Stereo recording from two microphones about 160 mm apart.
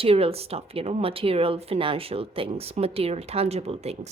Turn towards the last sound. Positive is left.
turn(degrees=-40)  # may be behind; listen again after turning